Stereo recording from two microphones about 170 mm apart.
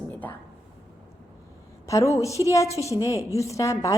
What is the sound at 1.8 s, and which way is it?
A woman's voice, 20° left (ahead or behind).